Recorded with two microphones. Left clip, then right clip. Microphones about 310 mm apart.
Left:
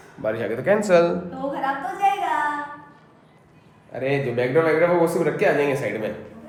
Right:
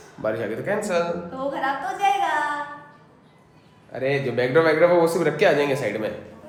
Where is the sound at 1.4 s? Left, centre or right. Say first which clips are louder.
Even; centre.